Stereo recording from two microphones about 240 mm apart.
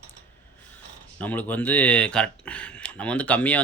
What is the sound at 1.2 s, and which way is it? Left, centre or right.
Speech, centre.